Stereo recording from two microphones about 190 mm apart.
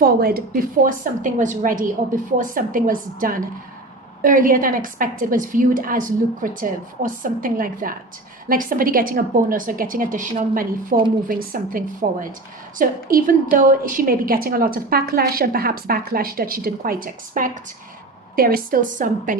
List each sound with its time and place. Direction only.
0.0 s a woman's voice: 55° right (ahead or behind)